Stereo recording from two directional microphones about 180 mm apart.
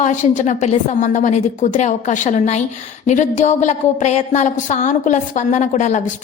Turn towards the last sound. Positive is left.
turn(degrees=40)  # may be behind; listen again after turning